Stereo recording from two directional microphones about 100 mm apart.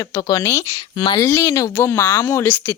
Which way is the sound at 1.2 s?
30° left (ahead or behind).